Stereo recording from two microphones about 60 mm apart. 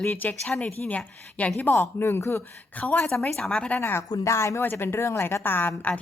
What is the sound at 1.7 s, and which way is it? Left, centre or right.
Speech, left.